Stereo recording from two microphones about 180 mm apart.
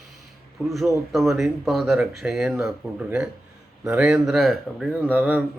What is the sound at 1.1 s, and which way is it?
Speech, centre (ahead or behind).